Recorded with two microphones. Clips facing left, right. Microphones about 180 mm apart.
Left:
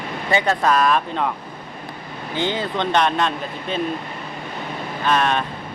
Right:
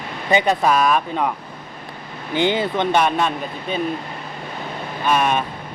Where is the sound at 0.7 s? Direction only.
5° right (ahead or behind).